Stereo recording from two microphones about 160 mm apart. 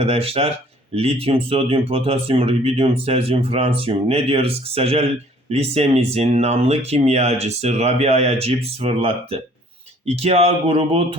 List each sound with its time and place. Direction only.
0.0 s speech: 40° right (ahead or behind)